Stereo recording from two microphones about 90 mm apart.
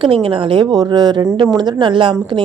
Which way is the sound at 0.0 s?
85° right.